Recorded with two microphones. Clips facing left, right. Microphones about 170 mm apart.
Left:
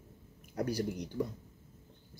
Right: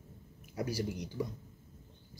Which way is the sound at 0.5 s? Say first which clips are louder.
Left 2 dB; 5° right (ahead or behind).